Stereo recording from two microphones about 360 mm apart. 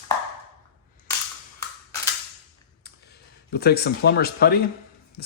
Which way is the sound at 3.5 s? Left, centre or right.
Left.